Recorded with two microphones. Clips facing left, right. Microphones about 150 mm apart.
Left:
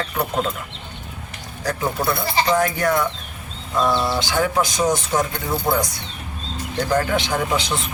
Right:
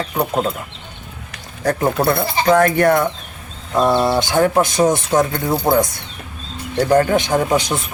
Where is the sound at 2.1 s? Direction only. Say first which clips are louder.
Right 3 dB; 55° right (ahead or behind).